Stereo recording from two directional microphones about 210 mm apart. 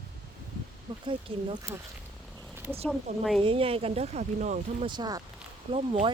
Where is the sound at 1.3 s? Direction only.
25° right (ahead or behind).